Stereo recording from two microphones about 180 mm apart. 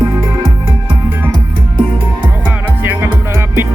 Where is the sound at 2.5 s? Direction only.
10° right (ahead or behind).